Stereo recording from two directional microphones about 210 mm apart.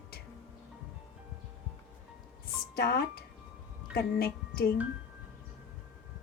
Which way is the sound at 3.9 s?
45° left (ahead or behind).